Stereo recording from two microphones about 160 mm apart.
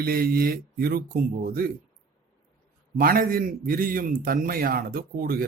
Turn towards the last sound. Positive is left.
turn(degrees=-65)  # may be behind; listen again after turning